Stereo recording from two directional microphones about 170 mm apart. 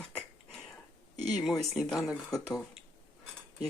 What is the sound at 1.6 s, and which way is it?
Speech, centre (ahead or behind).